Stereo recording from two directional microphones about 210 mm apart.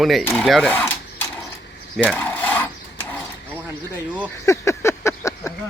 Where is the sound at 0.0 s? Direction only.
Centre (ahead or behind).